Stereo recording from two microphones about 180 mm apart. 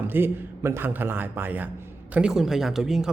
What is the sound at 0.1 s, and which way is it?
Speech, 10° right (ahead or behind).